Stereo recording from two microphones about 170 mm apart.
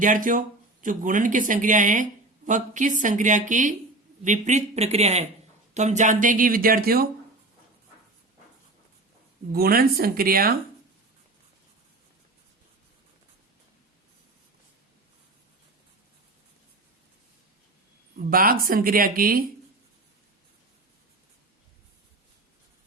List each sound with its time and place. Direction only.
0.0 s speech: 50° right (ahead or behind)
9.5 s speech: 65° right (ahead or behind)
18.3 s speech: 55° right (ahead or behind)